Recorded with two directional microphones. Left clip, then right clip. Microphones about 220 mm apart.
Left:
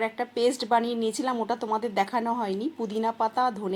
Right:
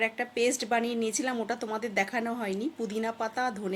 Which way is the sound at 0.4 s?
5° left (ahead or behind).